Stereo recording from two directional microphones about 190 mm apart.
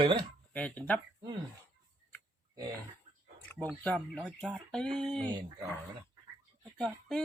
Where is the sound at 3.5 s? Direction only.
10° left (ahead or behind).